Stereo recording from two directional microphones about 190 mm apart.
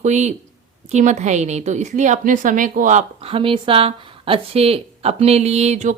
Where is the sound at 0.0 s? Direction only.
35° right (ahead or behind).